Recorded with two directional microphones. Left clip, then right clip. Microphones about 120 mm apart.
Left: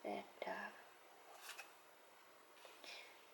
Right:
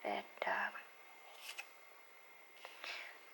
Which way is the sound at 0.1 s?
20° right (ahead or behind).